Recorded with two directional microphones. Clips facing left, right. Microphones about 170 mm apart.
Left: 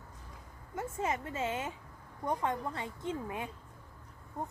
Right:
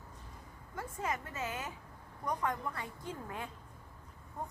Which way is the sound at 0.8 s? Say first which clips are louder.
Left 4 dB; 25° left (ahead or behind).